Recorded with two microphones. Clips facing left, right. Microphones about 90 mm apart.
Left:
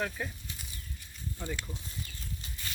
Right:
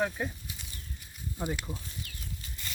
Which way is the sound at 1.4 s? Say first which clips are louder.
Right 5 dB; 20° right (ahead or behind).